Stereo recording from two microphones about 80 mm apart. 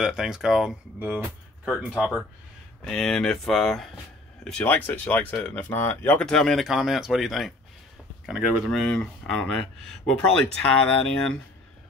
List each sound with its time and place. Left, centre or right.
0.0 s speech: centre
0.9 s speech: right
1.6 s speech: centre
2.8 s speech: centre
4.6 s speech: left
6.1 s speech: centre
6.7 s speech: centre
8.8 s speech: centre